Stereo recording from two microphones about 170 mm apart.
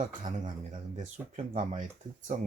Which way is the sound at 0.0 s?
45° right (ahead or behind).